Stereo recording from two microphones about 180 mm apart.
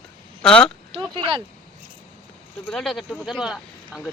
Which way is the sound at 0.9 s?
30° right (ahead or behind).